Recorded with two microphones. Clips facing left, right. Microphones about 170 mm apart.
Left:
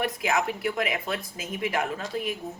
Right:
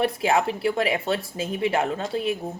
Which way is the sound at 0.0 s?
30° right (ahead or behind).